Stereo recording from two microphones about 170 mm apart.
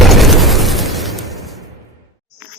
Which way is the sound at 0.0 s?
Centre (ahead or behind).